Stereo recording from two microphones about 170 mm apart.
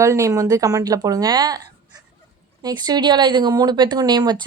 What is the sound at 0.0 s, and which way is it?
A woman's voice, 20° right (ahead or behind).